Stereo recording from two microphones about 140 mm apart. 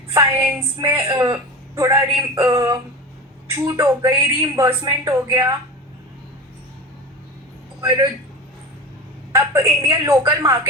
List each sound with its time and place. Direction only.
0.1 s a woman's voice: 20° right (ahead or behind)
7.8 s a man's voice: 30° right (ahead or behind)
9.3 s a woman's voice: 20° right (ahead or behind)